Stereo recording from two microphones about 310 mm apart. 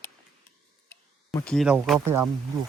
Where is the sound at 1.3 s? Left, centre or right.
Centre.